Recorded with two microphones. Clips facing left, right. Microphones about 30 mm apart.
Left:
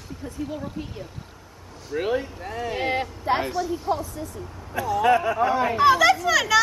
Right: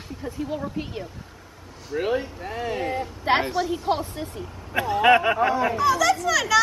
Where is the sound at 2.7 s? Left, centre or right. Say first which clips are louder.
Left 4 dB; left.